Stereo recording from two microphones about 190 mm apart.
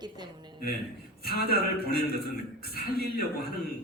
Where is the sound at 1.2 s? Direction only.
55° left (ahead or behind).